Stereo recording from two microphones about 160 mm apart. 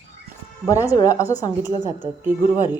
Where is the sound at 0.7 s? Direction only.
20° left (ahead or behind).